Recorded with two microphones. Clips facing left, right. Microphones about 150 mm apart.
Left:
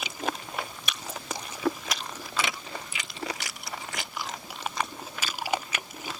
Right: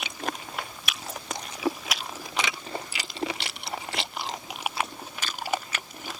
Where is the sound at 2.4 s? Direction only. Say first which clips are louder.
Right 1 dB; 15° right (ahead or behind).